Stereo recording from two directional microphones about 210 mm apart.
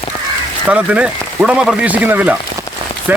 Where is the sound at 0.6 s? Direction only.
5° right (ahead or behind).